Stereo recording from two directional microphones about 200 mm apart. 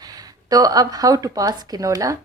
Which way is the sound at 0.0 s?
20° right (ahead or behind).